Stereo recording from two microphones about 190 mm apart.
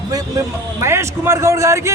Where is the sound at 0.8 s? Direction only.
15° right (ahead or behind).